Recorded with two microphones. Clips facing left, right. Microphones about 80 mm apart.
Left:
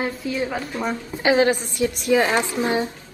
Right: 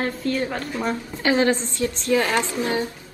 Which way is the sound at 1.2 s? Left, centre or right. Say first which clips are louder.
Left 2 dB; centre.